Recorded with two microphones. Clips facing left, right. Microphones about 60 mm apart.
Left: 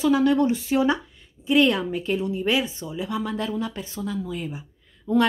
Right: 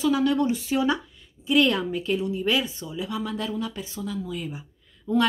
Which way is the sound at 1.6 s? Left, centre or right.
Centre.